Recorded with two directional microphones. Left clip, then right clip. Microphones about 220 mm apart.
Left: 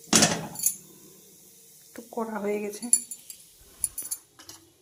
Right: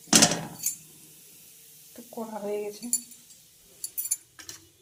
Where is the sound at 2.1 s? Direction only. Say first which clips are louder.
Left 3 dB; 20° left (ahead or behind).